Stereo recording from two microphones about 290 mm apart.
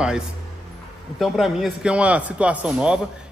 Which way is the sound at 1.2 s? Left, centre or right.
Centre.